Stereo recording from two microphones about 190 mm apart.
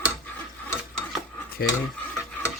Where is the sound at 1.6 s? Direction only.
55° left (ahead or behind).